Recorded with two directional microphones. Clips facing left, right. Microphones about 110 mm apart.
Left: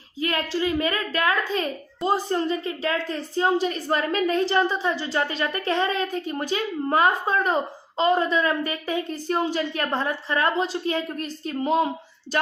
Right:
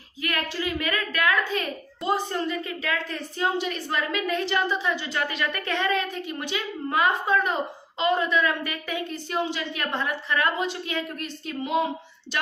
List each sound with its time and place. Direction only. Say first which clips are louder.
0.2 s a child's voice: left 4 dB; 30° left (ahead or behind)